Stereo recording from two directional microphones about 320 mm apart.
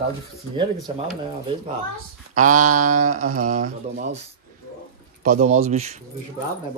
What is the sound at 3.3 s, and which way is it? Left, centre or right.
Speech, right.